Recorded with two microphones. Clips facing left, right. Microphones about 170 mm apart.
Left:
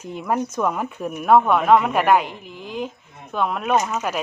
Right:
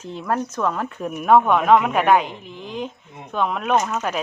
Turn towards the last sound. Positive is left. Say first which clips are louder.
# even
turn(degrees=5)  # may be behind; listen again after turning